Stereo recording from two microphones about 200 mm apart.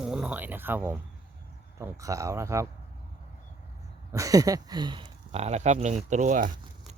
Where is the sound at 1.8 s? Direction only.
15° right (ahead or behind).